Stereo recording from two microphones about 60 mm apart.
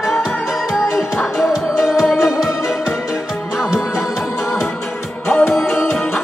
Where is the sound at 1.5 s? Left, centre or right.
Centre.